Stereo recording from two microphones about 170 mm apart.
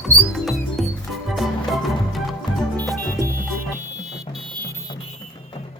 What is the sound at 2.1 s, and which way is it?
Music, centre (ahead or behind).